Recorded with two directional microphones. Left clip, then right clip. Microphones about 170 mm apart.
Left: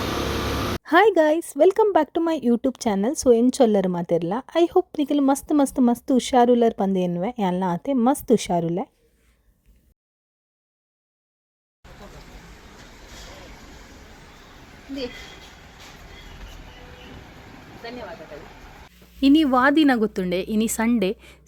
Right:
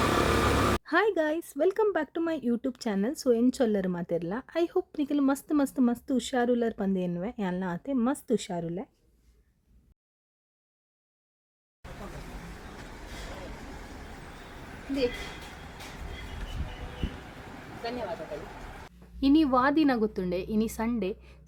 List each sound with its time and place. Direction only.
0.9 s speech: 35° left (ahead or behind)
19.2 s speech: 20° left (ahead or behind)